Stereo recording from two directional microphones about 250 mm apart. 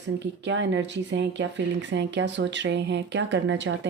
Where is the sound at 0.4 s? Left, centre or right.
Right.